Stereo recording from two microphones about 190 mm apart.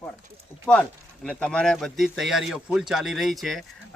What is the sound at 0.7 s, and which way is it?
Speech, 5° left (ahead or behind).